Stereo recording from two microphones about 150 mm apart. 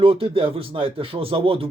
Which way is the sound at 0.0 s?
35° right (ahead or behind).